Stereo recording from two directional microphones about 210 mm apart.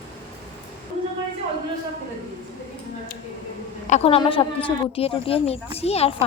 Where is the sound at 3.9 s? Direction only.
30° left (ahead or behind).